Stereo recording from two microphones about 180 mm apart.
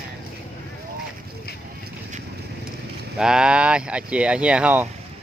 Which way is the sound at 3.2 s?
5° right (ahead or behind).